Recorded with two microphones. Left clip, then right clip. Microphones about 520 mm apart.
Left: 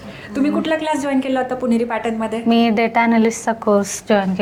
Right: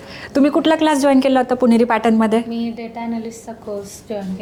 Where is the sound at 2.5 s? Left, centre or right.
Left.